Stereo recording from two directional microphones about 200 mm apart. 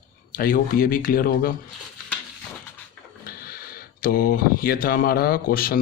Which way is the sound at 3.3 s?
50° left (ahead or behind).